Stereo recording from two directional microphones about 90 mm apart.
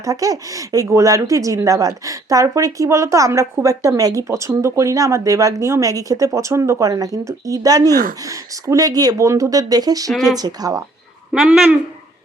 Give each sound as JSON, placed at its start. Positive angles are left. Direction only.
{"t": 0.0, "sound": "speech", "side_deg": -40}
{"t": 10.1, "sound": "speech", "side_deg": 0}
{"t": 10.3, "sound": "speech", "side_deg": -45}
{"t": 11.3, "sound": "speech", "side_deg": -5}